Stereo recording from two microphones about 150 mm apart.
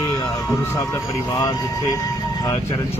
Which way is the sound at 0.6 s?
20° left (ahead or behind).